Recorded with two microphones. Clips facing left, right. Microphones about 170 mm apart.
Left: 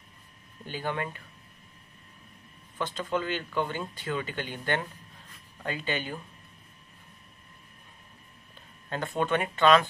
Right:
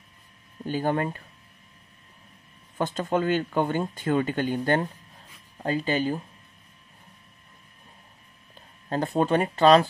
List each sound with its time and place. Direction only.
0.7 s speech: 45° right (ahead or behind)
2.8 s speech: 45° right (ahead or behind)
8.8 s speech: 35° right (ahead or behind)